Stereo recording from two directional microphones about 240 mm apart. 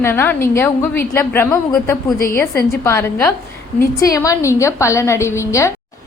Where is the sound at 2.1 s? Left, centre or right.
Left.